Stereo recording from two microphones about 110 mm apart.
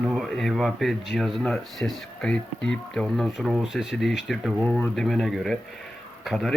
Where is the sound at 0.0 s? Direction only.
Centre (ahead or behind).